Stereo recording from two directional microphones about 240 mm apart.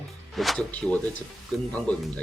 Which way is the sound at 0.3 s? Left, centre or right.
Centre.